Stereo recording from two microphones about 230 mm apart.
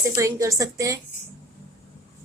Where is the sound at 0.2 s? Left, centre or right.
Centre.